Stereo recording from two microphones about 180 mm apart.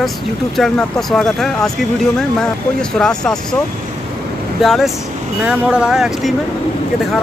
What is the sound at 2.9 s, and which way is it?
Speech, 5° left (ahead or behind).